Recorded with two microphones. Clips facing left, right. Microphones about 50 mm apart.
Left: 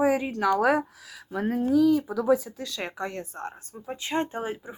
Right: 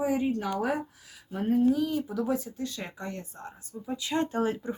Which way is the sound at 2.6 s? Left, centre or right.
Left.